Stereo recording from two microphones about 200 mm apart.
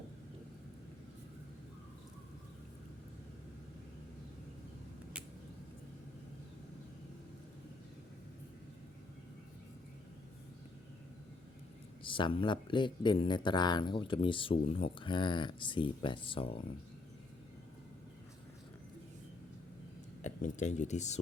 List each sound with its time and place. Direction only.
12.0 s speech: 25° left (ahead or behind)
20.2 s speech: 35° left (ahead or behind)